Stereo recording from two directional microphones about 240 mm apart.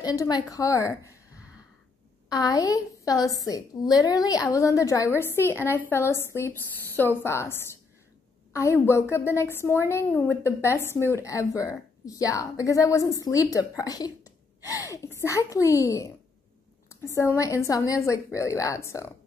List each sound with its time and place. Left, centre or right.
0.0 s a woman's voice: centre
8.5 s a woman's voice: centre
17.1 s a woman's voice: centre